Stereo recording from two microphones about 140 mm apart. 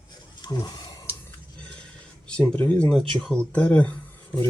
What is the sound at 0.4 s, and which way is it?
Speech, 30° left (ahead or behind).